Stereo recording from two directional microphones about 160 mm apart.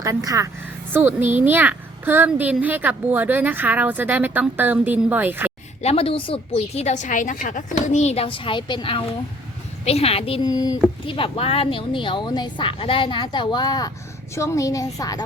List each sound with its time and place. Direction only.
0.0 s a woman's voice: 20° right (ahead or behind)
5.8 s a woman's voice: 40° left (ahead or behind); by 15.2 s 20° left (ahead or behind)